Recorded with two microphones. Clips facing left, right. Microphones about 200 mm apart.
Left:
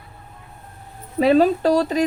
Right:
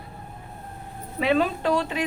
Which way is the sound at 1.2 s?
40° left (ahead or behind).